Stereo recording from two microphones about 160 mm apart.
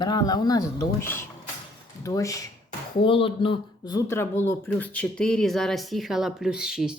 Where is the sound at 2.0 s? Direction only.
20° left (ahead or behind).